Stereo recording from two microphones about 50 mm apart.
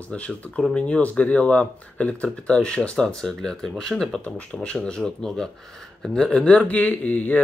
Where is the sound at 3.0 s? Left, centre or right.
Centre.